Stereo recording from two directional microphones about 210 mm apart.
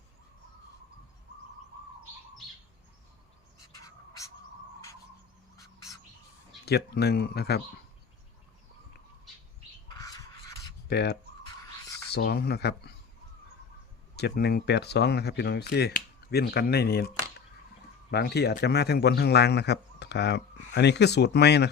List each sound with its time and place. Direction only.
6.7 s speech: 50° left (ahead or behind)
9.9 s bird: 15° left (ahead or behind)
10.8 s speech: 50° left (ahead or behind)
14.2 s speech: 50° left (ahead or behind)
18.1 s speech: 50° left (ahead or behind)